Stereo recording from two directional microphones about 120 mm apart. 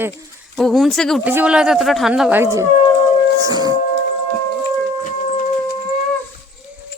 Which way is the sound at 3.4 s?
30° right (ahead or behind).